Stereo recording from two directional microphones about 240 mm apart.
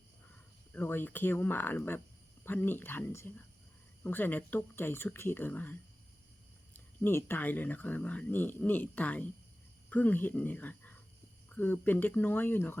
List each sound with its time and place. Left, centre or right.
0.7 s speech: centre
6.7 s speech: centre